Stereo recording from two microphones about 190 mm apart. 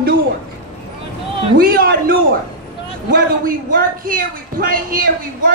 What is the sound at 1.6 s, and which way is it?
A woman's voice, 50° right (ahead or behind).